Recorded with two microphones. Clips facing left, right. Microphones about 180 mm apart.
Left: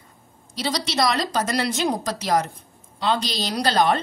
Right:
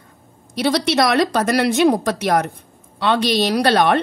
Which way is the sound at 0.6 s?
60° right (ahead or behind).